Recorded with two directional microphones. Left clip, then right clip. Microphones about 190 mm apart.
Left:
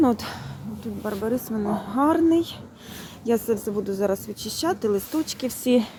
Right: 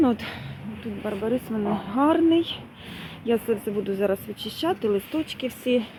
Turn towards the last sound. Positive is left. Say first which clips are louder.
# left 1 dB
turn(degrees=25)  # may be behind; listen again after turning